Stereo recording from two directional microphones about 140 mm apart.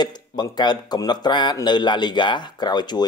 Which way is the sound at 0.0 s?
30° left (ahead or behind).